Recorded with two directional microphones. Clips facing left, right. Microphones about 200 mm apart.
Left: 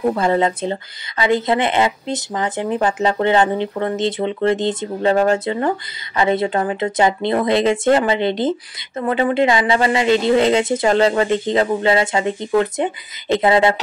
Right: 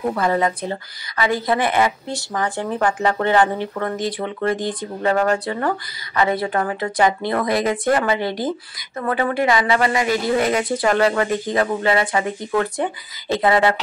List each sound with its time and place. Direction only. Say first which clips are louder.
0.1 s speech: left 2 dB; 25° left (ahead or behind)